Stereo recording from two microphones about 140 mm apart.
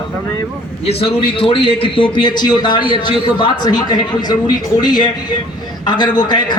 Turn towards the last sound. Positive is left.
turn(degrees=30)  # may be behind; listen again after turning